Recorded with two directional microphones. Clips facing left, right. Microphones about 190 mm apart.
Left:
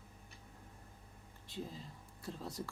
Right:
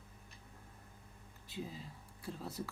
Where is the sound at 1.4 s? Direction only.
5° right (ahead or behind).